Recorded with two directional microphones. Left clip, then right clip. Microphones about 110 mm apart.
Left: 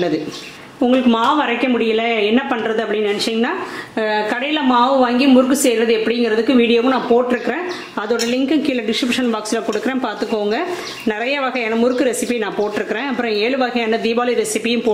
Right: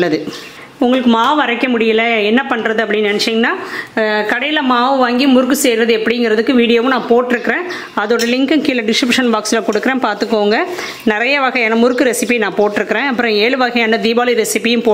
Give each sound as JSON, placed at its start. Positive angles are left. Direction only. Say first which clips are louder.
{"t": 0.7, "sound": "a woman's voice", "louder": "right 3 dB", "side_deg": -45}